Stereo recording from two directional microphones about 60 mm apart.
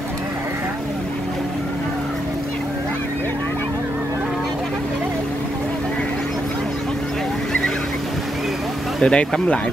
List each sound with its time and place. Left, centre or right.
9.0 s speech: centre